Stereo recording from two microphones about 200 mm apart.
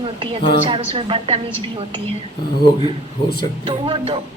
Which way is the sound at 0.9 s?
25° right (ahead or behind).